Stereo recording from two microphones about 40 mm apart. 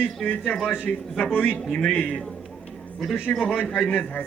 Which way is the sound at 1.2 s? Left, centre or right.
Left.